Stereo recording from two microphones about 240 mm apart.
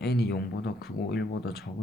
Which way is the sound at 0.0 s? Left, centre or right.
Left.